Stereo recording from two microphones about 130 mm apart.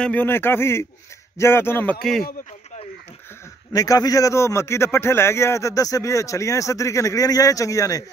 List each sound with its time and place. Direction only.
0.0 s speech: 15° left (ahead or behind)
2.0 s speech: 5° left (ahead or behind)
3.7 s a man's voice: 25° left (ahead or behind)